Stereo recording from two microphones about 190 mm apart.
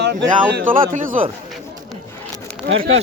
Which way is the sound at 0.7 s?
45° right (ahead or behind).